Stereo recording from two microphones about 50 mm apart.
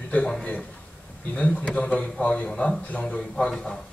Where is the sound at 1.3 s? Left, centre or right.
Left.